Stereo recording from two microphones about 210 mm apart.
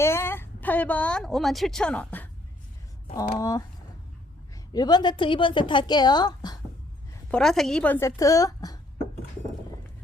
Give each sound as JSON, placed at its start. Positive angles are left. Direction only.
{"t": 0.0, "sound": "a woman's voice", "side_deg": 10}
{"t": 7.3, "sound": "speech", "side_deg": 5}